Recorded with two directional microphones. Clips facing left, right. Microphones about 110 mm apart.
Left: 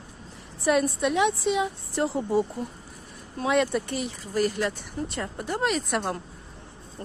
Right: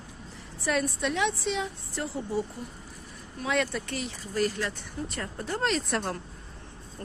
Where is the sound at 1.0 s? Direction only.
15° left (ahead or behind).